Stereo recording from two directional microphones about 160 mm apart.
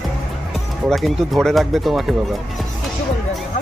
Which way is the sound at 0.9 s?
Centre (ahead or behind).